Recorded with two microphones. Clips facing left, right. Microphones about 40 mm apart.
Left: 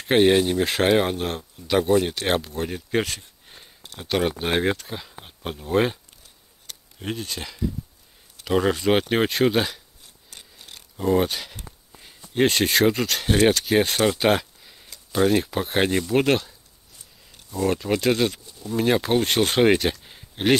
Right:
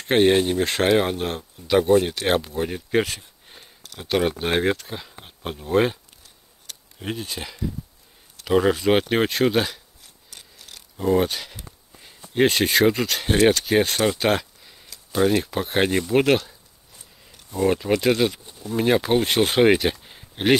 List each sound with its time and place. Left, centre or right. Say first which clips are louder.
0.0 s speech: even; centre
7.0 s speech: even; centre
10.3 s mechanisms: even; centre
11.0 s a sound: right 1 dB; centre
12.4 s speech: right 1 dB; centre